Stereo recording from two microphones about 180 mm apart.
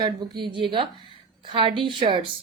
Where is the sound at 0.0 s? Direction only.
25° right (ahead or behind).